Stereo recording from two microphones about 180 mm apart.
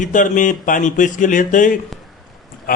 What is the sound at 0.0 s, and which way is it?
A man's voice, 45° left (ahead or behind).